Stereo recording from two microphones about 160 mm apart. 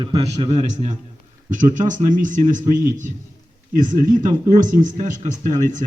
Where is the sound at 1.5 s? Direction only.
50° right (ahead or behind).